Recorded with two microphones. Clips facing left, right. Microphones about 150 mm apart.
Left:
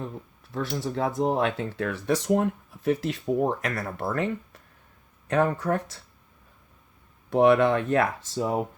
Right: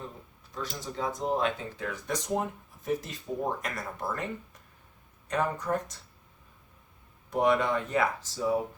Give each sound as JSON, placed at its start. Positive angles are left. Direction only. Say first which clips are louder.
{"t": 0.5, "sound": "speech", "louder": "left 7 dB", "side_deg": 70}
{"t": 1.8, "sound": "speech", "louder": "left 9 dB", "side_deg": 80}
{"t": 5.3, "sound": "speech", "louder": "left 5 dB", "side_deg": 90}
{"t": 7.3, "sound": "speech", "louder": "left 7 dB", "side_deg": 75}